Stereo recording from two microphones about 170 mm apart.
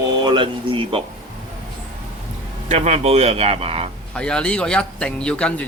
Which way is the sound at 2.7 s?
40° right (ahead or behind).